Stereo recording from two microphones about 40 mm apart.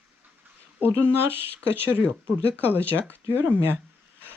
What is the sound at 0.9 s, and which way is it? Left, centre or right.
Speech, right.